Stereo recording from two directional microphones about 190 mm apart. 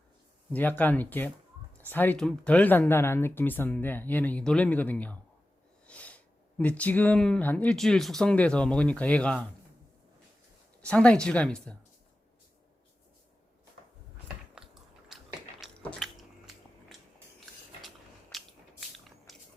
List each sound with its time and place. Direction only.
0.5 s speech: 10° left (ahead or behind)
10.8 s speech: 5° left (ahead or behind)
15.1 s biting: centre (ahead or behind)
17.8 s biting: centre (ahead or behind)